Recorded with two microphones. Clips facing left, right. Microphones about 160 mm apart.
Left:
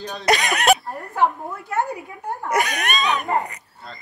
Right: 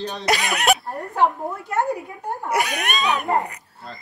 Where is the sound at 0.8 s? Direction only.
20° right (ahead or behind).